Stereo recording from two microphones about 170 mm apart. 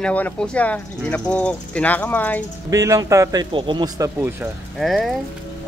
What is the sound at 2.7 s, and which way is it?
Speech, 20° right (ahead or behind).